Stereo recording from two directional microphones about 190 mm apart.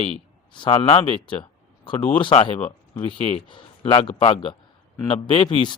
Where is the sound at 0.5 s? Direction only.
25° left (ahead or behind).